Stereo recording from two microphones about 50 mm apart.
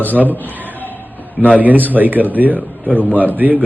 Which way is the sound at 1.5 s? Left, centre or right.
Right.